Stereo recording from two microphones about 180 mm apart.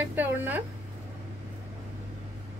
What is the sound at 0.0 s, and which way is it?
Speech, 10° right (ahead or behind).